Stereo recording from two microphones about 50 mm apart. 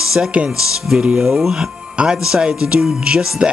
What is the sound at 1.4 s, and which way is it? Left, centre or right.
Speech, centre.